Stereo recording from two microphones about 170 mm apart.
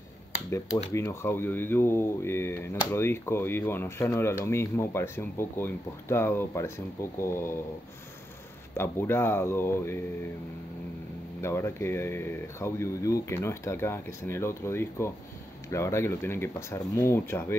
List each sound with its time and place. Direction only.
0.9 s speech: 15° left (ahead or behind)
8.7 s speech: 15° left (ahead or behind)
11.4 s speech: 15° left (ahead or behind)